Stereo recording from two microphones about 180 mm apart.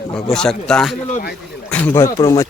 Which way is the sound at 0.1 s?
5° left (ahead or behind).